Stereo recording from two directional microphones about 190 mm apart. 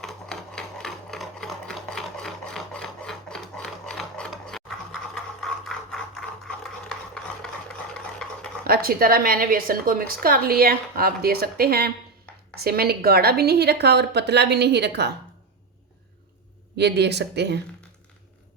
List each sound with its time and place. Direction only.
0.0 s sewing machine: 5° left (ahead or behind)
8.2 s stir: 5° left (ahead or behind)
8.6 s a woman's voice: 50° right (ahead or behind)
16.7 s a woman's voice: 60° right (ahead or behind)